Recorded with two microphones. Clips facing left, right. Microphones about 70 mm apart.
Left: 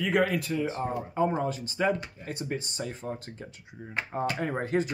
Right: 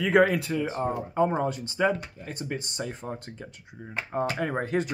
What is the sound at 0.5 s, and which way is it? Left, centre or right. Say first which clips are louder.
Speech: right 1 dB; right.